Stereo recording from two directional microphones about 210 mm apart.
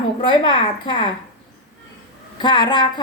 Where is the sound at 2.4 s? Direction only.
20° left (ahead or behind).